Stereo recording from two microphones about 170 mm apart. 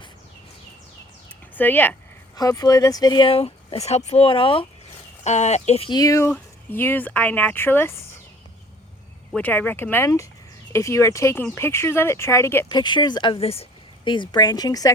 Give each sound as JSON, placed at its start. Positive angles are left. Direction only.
{"t": 1.5, "sound": "speech", "side_deg": 10}
{"t": 2.3, "sound": "speech", "side_deg": 20}
{"t": 5.2, "sound": "speech", "side_deg": 40}
{"t": 5.9, "sound": "speech", "side_deg": 20}
{"t": 9.3, "sound": "speech", "side_deg": 10}
{"t": 12.6, "sound": "speech", "side_deg": 25}